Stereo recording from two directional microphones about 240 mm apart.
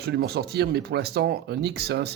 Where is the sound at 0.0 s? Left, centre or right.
Right.